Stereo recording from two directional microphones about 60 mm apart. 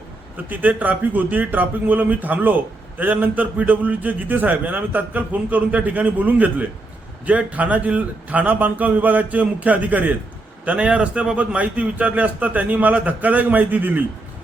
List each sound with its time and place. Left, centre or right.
0.4 s a man's voice: right